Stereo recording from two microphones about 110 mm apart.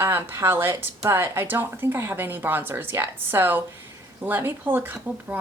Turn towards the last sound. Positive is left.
turn(degrees=-15)  # may be behind; listen again after turning